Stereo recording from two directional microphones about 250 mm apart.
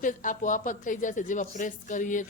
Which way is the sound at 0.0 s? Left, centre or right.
Left.